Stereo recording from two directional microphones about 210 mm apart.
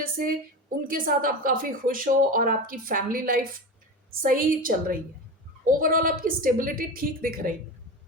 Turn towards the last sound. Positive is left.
turn(degrees=-40)  # may be behind; listen again after turning